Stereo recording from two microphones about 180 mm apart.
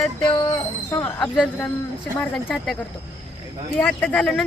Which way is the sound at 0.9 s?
20° left (ahead or behind).